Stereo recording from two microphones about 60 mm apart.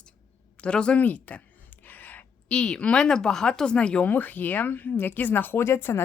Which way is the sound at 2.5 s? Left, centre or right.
Centre.